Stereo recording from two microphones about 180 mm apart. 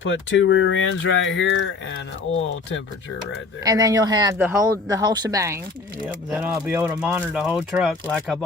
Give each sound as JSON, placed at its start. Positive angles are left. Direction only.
{"t": 0.0, "sound": "speech", "side_deg": 90}
{"t": 3.6, "sound": "speech", "side_deg": -20}